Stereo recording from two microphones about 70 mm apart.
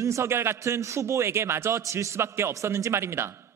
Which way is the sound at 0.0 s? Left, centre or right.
Right.